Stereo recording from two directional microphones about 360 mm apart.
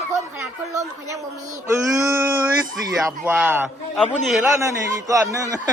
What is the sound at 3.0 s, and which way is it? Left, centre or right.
A man's voice, centre.